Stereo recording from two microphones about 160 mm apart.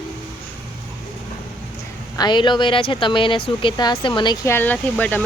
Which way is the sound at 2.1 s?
25° left (ahead or behind).